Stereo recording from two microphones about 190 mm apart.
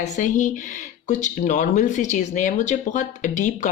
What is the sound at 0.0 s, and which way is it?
Speech, 40° left (ahead or behind).